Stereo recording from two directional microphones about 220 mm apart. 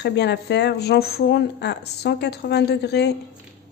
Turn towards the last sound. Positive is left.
turn(degrees=50)  # may be behind; listen again after turning